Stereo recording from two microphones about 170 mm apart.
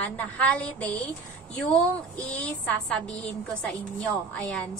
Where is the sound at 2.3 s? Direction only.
10° left (ahead or behind).